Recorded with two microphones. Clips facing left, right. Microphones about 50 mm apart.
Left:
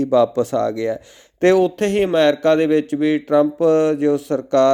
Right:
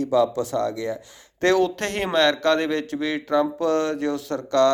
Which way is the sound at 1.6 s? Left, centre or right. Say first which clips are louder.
Left 6 dB; centre.